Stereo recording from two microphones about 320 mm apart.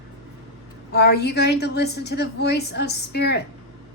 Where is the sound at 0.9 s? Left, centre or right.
Left.